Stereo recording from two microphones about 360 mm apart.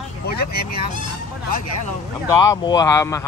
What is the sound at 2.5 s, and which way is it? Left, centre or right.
Speech, centre.